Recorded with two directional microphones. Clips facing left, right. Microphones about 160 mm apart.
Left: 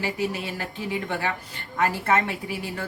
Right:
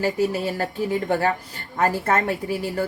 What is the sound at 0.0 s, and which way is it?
A woman's voice, 40° right (ahead or behind).